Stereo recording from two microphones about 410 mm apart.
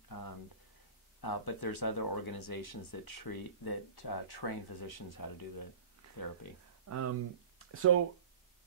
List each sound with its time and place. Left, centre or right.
0.1 s a sound: left
1.2 s speech: left
6.9 s speech: right